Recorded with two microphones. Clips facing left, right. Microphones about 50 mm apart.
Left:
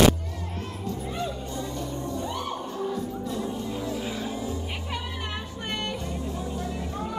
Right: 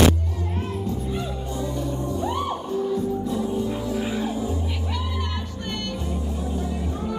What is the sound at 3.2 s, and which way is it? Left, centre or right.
Music, centre.